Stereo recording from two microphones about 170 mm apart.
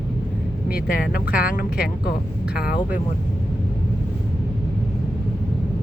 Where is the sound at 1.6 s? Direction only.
65° left (ahead or behind).